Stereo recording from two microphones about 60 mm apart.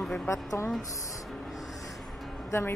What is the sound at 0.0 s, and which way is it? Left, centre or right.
Speech, centre.